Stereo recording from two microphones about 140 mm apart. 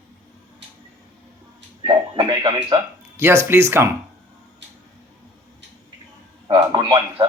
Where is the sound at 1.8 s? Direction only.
35° right (ahead or behind).